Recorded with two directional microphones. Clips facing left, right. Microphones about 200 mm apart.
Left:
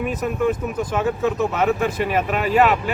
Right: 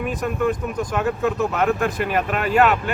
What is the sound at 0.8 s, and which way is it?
Speech, centre (ahead or behind).